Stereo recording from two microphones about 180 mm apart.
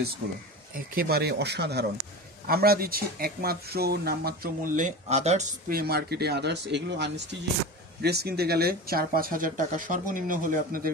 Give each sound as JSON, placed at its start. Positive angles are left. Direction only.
{"t": 0.7, "sound": "speech", "side_deg": -55}
{"t": 5.7, "sound": "speech", "side_deg": -55}